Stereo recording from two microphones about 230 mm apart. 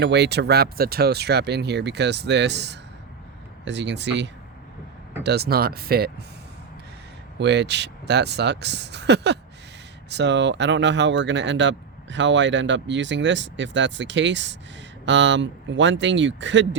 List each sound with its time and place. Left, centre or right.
0.0 s speech: right
7.3 s speech: right